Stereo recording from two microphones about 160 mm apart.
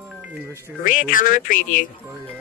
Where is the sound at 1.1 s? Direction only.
55° left (ahead or behind).